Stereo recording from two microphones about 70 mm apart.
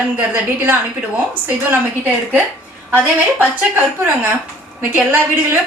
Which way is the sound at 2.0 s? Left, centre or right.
Right.